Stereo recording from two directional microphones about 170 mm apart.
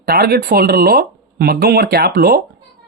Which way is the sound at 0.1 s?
65° right (ahead or behind).